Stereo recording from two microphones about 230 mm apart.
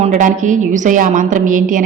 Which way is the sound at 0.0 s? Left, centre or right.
Right.